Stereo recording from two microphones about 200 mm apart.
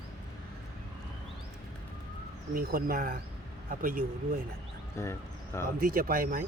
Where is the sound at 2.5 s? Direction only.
45° right (ahead or behind).